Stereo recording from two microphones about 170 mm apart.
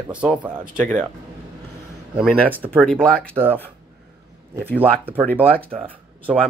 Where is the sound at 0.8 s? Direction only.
5° left (ahead or behind).